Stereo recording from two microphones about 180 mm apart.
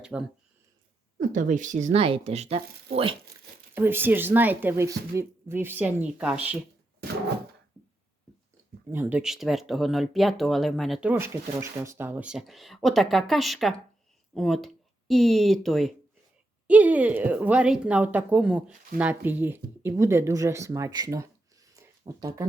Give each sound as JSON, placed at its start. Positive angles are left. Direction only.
{"t": 0.0, "sound": "speech", "side_deg": -5}
{"t": 1.2, "sound": "speech", "side_deg": -45}
{"t": 3.8, "sound": "speech", "side_deg": -10}
{"t": 8.9, "sound": "speech", "side_deg": -10}